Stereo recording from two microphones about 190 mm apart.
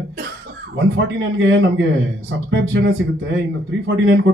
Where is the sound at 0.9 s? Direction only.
75° right (ahead or behind).